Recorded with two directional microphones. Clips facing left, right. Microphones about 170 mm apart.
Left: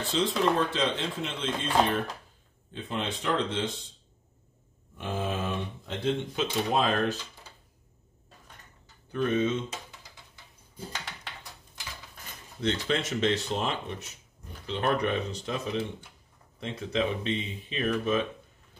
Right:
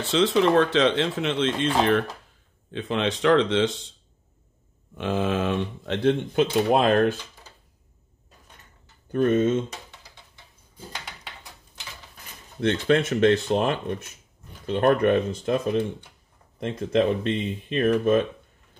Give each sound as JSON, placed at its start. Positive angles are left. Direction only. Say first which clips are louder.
{"t": 0.1, "sound": "speech", "louder": "right 7 dB", "side_deg": -80}
{"t": 4.9, "sound": "speech", "louder": "right 7 dB", "side_deg": -90}
{"t": 6.7, "sound": "speech", "louder": "right 5 dB", "side_deg": -55}
{"t": 9.1, "sound": "speech", "louder": "right 6 dB", "side_deg": -50}
{"t": 12.5, "sound": "speech", "louder": "right 7 dB", "side_deg": -60}